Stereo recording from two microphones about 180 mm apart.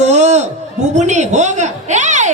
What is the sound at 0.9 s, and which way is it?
A woman's voice, 40° right (ahead or behind).